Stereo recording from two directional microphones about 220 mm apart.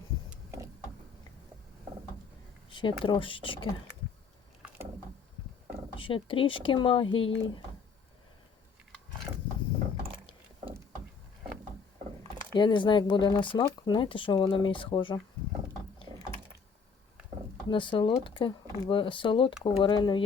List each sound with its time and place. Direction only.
0.3 s printer: 15° right (ahead or behind)
2.6 s speech: 20° left (ahead or behind)
6.0 s speech: 25° left (ahead or behind)
12.5 s speech: 20° left (ahead or behind)
17.7 s speech: 20° left (ahead or behind)